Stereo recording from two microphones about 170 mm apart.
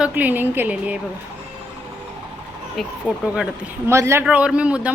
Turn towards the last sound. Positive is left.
turn(degrees=-5)  # may be behind; listen again after turning